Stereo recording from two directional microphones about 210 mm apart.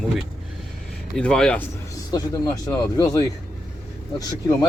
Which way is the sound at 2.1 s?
15° left (ahead or behind).